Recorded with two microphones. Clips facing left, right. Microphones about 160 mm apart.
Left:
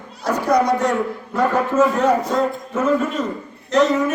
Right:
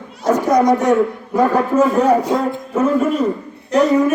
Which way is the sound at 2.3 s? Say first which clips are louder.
Right 2 dB; 10° right (ahead or behind).